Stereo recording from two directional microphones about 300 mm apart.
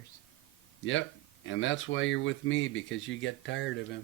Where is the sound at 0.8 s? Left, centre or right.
Left.